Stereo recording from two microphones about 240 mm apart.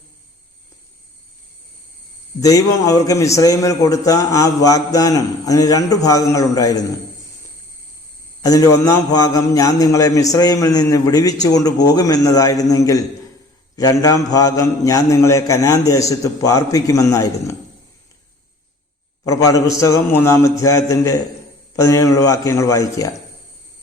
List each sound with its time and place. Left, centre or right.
2.4 s a man's voice: centre
8.4 s a man's voice: centre
19.2 s a man's voice: centre